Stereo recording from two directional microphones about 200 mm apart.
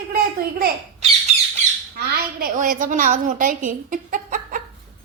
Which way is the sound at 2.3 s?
45° right (ahead or behind).